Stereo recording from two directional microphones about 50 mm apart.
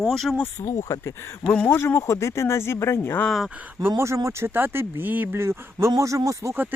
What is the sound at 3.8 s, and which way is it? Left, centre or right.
Speech, right.